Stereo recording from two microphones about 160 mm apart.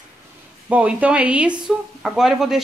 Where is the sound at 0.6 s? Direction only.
10° right (ahead or behind).